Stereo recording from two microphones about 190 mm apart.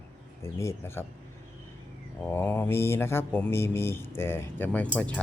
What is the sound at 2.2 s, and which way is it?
Speech, 10° left (ahead or behind).